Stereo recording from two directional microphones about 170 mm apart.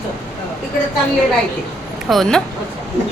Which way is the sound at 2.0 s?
Centre (ahead or behind).